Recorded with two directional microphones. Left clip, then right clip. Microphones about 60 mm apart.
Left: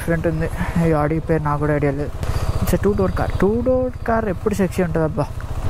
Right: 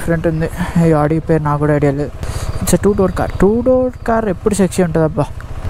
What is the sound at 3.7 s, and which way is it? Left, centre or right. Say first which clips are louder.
Speech: right 6 dB; right.